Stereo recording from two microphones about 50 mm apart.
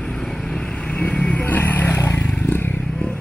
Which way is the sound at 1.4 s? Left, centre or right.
Left.